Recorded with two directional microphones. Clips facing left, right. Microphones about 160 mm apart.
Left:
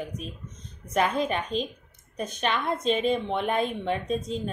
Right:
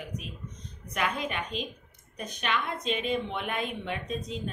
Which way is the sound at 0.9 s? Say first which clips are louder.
Left 6 dB; 35° left (ahead or behind).